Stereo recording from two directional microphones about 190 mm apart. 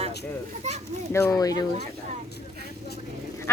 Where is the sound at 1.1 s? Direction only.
15° left (ahead or behind).